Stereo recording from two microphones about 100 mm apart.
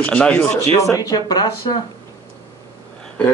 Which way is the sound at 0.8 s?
35° left (ahead or behind).